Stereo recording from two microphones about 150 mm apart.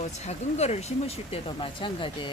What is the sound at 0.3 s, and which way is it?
Speech, 50° left (ahead or behind).